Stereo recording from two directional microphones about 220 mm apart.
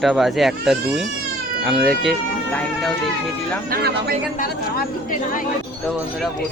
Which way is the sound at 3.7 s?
45° right (ahead or behind).